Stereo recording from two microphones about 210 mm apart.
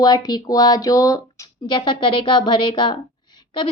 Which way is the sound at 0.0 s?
20° left (ahead or behind).